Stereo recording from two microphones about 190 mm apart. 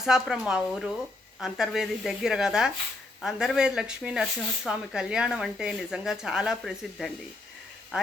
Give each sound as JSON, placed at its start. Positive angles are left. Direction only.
{"t": 0.0, "sound": "speech", "side_deg": 0}